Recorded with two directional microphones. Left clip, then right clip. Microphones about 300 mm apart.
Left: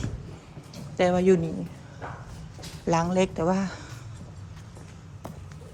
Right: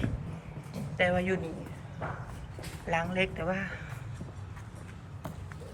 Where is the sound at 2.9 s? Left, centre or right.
Centre.